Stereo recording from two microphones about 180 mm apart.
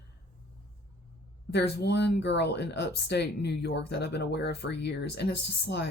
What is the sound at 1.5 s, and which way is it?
Speech, 65° left (ahead or behind).